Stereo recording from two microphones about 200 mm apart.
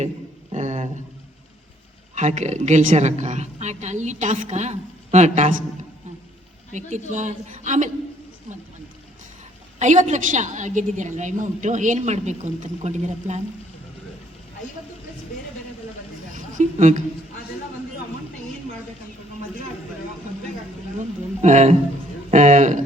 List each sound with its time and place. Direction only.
0.5 s a sound: 35° right (ahead or behind)
2.1 s a woman's voice: 35° right (ahead or behind)
7.1 s a woman's voice: 40° right (ahead or behind)
9.7 s a woman's voice: 35° right (ahead or behind)
16.3 s a sound: 40° right (ahead or behind)
21.0 s a woman's voice: 35° right (ahead or behind)